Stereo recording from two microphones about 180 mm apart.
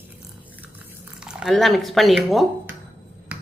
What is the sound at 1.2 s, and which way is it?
Speech, 5° right (ahead or behind).